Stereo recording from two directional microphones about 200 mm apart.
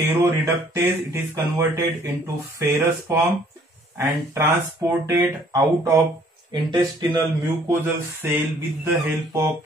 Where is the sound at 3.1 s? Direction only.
15° right (ahead or behind).